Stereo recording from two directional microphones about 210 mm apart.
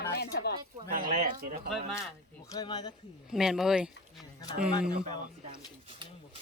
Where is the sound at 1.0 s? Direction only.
40° right (ahead or behind).